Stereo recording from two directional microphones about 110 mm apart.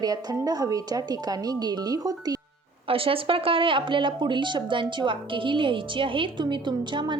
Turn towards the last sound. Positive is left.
turn(degrees=-45)  # may be behind; listen again after turning